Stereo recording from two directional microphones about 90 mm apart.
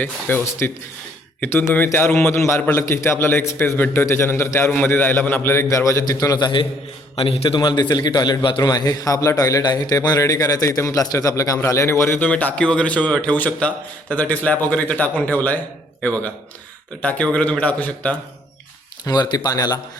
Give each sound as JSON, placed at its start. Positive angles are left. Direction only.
{"t": 0.0, "sound": "a man's voice", "side_deg": 20}
{"t": 5.6, "sound": "a man's voice", "side_deg": 35}
{"t": 7.2, "sound": "a man's voice", "side_deg": 85}
{"t": 7.6, "sound": "a man's voice", "side_deg": 50}
{"t": 8.7, "sound": "a man's voice", "side_deg": 45}
{"t": 12.3, "sound": "a man's voice", "side_deg": 15}
{"t": 17.0, "sound": "a man's voice", "side_deg": 15}
{"t": 19.0, "sound": "a man's voice", "side_deg": 50}